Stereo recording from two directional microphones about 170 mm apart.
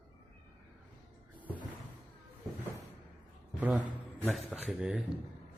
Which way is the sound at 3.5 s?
10° right (ahead or behind).